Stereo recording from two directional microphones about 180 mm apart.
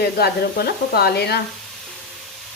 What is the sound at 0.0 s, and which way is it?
Speech, 60° left (ahead or behind).